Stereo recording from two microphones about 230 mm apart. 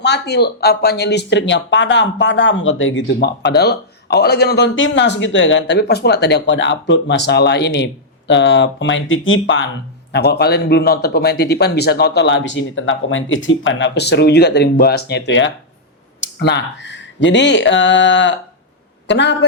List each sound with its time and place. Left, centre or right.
0.0 s a man's voice: left